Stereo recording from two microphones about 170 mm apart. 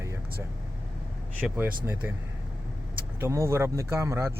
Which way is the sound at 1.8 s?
15° right (ahead or behind).